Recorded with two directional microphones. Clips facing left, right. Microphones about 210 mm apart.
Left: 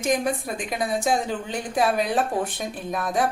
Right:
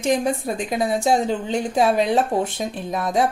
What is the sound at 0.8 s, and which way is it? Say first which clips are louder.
Speech: right 4 dB; 25° right (ahead or behind).